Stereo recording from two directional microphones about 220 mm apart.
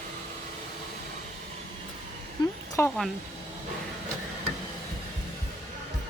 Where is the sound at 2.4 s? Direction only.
20° left (ahead or behind).